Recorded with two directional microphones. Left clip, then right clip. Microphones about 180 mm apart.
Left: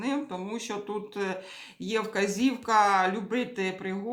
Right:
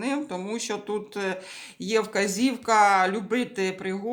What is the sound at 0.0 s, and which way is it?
Speech, 35° right (ahead or behind).